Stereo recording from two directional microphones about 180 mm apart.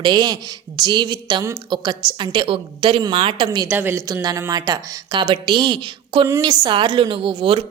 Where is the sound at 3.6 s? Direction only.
10° right (ahead or behind); by 7.6 s 30° right (ahead or behind).